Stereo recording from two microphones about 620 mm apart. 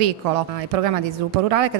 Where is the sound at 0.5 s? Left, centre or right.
Right.